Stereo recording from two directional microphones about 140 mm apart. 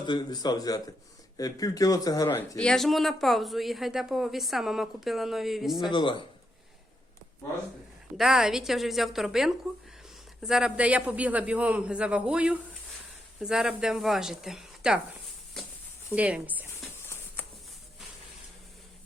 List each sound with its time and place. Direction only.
0.0 s speech: 30° left (ahead or behind)
2.6 s speech: 5° left (ahead or behind)
5.9 s speech: 35° left (ahead or behind)
8.2 s a man's voice: 5° right (ahead or behind)
16.1 s a man's voice: 10° right (ahead or behind)